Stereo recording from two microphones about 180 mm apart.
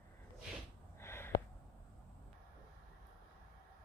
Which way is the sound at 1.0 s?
15° left (ahead or behind).